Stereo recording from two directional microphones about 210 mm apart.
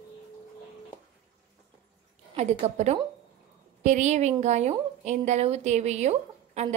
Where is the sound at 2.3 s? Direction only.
30° right (ahead or behind).